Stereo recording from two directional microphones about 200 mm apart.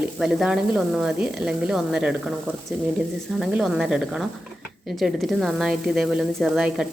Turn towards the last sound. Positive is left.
turn(degrees=-5)  # may be behind; listen again after turning